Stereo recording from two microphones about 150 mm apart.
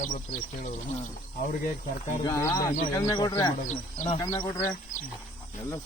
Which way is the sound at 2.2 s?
20° left (ahead or behind).